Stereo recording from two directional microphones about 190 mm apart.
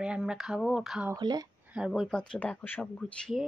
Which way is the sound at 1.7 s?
5° right (ahead or behind).